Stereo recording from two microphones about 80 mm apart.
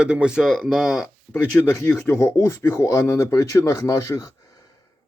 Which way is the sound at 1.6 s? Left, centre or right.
Left.